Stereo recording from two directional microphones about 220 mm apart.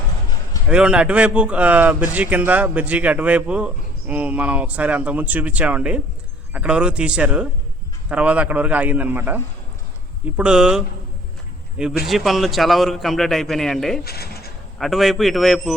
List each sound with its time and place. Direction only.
0.7 s a man's voice: 5° right (ahead or behind)
12.0 s a man's voice: centre (ahead or behind)
14.0 s mechanisms: 45° left (ahead or behind)
14.8 s a man's voice: centre (ahead or behind)